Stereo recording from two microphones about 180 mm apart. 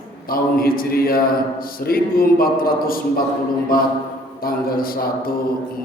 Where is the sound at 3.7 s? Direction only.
55° left (ahead or behind).